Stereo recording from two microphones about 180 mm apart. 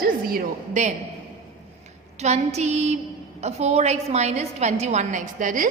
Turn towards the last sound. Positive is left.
turn(degrees=-45)  # may be behind; listen again after turning